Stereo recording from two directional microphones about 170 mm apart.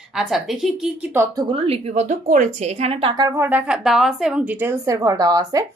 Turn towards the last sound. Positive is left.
turn(degrees=-20)  # may be behind; listen again after turning